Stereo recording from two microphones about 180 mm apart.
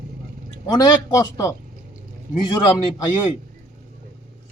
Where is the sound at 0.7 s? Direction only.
20° left (ahead or behind).